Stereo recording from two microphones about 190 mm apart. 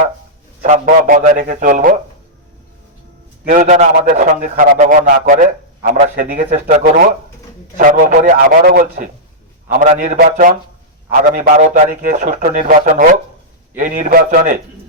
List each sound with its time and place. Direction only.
0.6 s a man's voice: 45° right (ahead or behind)
3.4 s a man's voice: 40° right (ahead or behind)